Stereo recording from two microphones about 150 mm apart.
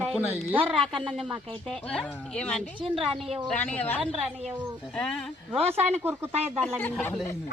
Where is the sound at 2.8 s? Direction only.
35° right (ahead or behind).